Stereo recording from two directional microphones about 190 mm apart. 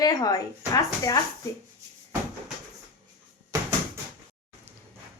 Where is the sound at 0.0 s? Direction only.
20° left (ahead or behind).